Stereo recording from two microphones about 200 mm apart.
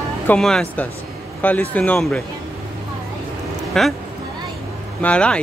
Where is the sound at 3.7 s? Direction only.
Centre (ahead or behind).